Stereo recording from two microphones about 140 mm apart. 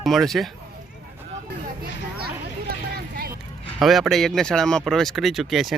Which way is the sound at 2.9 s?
90° right.